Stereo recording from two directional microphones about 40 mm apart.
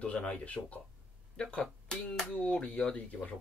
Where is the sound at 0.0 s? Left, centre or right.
Left.